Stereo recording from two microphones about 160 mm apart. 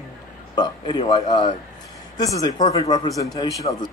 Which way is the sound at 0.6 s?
30° left (ahead or behind).